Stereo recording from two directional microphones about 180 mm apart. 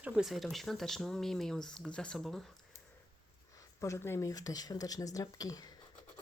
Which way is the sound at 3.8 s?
15° left (ahead or behind).